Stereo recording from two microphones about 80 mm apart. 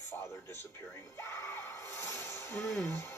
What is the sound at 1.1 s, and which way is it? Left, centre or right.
Music, left.